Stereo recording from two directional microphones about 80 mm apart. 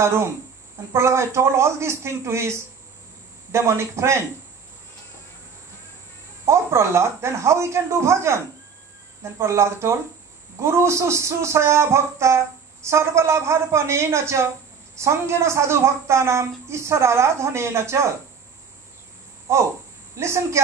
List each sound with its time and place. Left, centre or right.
0.0 s a woman's voice: right
3.5 s a woman's voice: right
6.4 s a woman's voice: right
19.5 s a woman's voice: right